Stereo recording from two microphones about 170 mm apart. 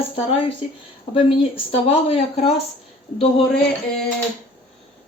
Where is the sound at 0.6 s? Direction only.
35° left (ahead or behind).